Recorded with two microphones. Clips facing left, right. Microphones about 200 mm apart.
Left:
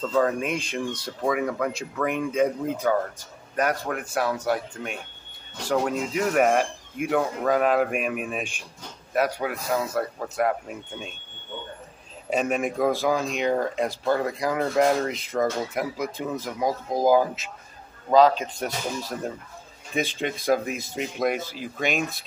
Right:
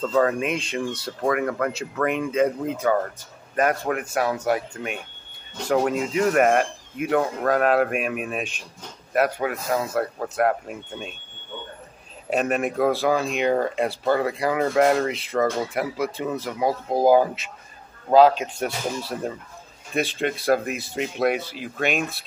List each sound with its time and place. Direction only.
0.0 s speech: centre (ahead or behind)
12.3 s speech: 5° right (ahead or behind)
18.1 s speech: 5° right (ahead or behind)
21.4 s speech: 45° left (ahead or behind)